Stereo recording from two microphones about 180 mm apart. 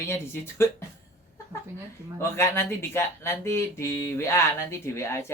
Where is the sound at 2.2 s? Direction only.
15° left (ahead or behind).